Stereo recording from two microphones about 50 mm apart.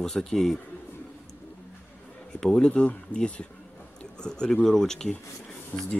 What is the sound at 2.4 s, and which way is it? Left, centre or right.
Speech, centre.